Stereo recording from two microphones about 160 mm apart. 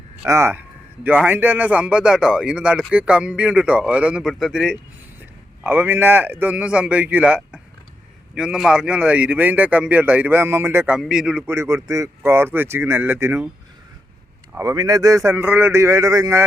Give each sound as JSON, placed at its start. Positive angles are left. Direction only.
{"t": 0.3, "sound": "a man's voice", "side_deg": -15}
{"t": 11.4, "sound": "a man's voice", "side_deg": -15}
{"t": 14.5, "sound": "a man's voice", "side_deg": -20}